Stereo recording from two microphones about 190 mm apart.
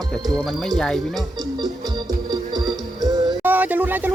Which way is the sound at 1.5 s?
20° right (ahead or behind).